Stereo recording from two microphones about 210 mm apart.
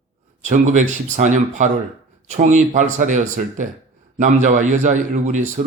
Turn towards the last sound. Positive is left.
turn(degrees=-35)  # may be behind; listen again after turning